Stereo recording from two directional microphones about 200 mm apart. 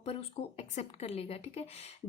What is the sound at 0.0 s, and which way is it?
Speech, 30° left (ahead or behind).